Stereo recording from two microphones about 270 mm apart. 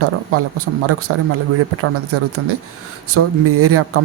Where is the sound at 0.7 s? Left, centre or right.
Right.